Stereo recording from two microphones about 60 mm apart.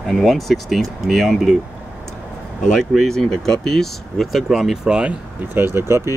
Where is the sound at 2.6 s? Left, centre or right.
Centre.